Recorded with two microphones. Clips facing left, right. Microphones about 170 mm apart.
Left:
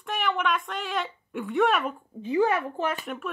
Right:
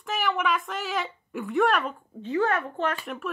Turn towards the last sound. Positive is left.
turn(degrees=0)  # may be behind; listen again after turning